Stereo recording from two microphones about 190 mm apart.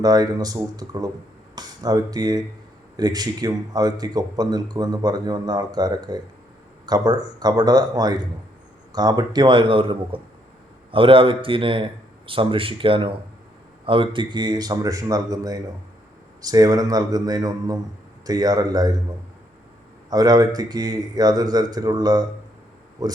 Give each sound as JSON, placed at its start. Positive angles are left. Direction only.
{"t": 0.0, "sound": "speech", "side_deg": -20}
{"t": 20.1, "sound": "speech", "side_deg": -20}